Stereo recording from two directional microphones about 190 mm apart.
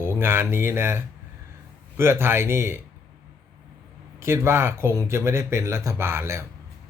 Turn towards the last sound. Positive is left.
turn(degrees=-15)  # may be behind; listen again after turning